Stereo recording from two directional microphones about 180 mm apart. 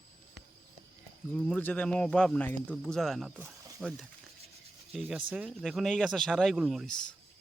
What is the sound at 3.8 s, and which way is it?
Speech, 5° right (ahead or behind).